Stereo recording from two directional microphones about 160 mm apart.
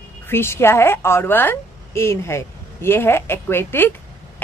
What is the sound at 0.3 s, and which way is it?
A woman's voice, 15° left (ahead or behind).